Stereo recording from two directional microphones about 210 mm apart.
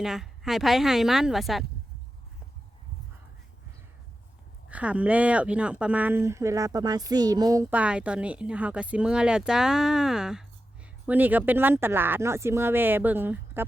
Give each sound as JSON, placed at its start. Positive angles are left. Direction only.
{"t": 0.0, "sound": "a woman's voice", "side_deg": 0}
{"t": 4.7, "sound": "a woman's voice", "side_deg": -5}